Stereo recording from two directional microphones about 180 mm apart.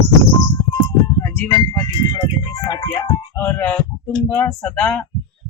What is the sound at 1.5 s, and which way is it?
Speech, 20° left (ahead or behind).